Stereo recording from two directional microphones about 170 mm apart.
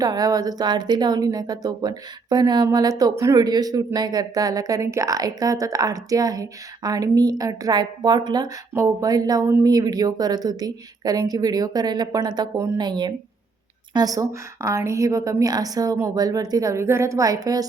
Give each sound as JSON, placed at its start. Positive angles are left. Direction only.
{"t": 0.0, "sound": "speech", "side_deg": -20}